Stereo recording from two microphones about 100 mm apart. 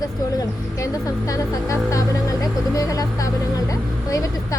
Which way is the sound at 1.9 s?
35° left (ahead or behind).